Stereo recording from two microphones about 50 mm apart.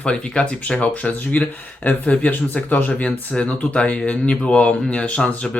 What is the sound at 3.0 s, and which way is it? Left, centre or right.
Speech, left.